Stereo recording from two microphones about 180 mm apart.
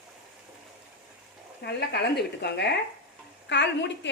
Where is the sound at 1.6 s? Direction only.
65° left (ahead or behind).